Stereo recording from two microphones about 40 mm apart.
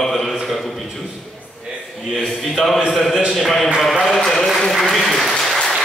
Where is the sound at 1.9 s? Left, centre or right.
Centre.